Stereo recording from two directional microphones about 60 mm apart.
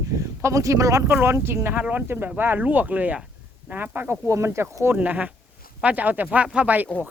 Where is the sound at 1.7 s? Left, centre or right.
Right.